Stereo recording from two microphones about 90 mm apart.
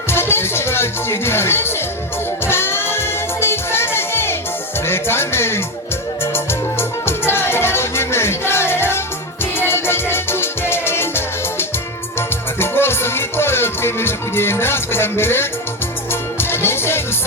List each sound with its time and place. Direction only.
0.1 s music: 25° left (ahead or behind)